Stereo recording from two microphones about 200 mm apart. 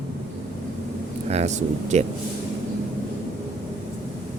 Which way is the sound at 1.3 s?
35° right (ahead or behind).